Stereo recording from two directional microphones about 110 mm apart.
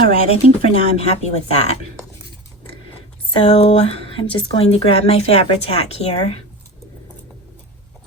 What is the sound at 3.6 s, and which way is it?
Speech, 70° left (ahead or behind).